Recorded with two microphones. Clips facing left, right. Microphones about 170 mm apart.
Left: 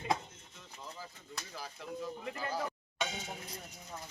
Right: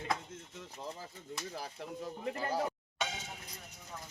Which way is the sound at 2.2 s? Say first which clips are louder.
Right 6 dB; 30° right (ahead or behind).